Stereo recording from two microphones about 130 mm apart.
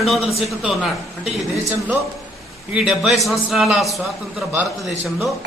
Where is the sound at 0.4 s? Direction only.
5° right (ahead or behind).